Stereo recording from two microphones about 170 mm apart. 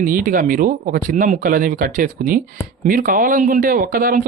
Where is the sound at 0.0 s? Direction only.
50° right (ahead or behind).